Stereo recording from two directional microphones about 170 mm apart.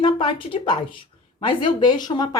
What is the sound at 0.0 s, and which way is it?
A woman's voice, 30° left (ahead or behind).